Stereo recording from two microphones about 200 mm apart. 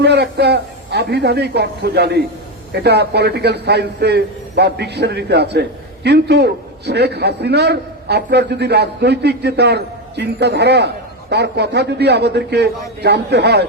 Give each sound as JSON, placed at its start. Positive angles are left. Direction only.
{"t": 0.0, "sound": "a man's voice", "side_deg": -55}